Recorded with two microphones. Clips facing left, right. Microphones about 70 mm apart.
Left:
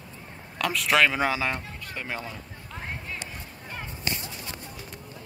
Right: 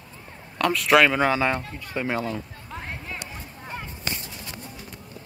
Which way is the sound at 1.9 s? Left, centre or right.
Centre.